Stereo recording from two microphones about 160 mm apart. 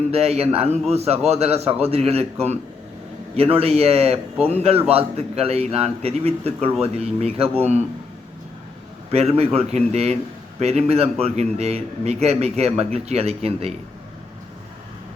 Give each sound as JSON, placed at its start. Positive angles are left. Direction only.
{"t": 0.1, "sound": "a man's voice", "side_deg": -40}
{"t": 9.1, "sound": "a man's voice", "side_deg": -40}